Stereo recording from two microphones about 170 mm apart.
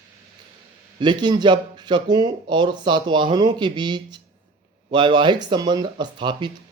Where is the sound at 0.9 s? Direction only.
25° right (ahead or behind).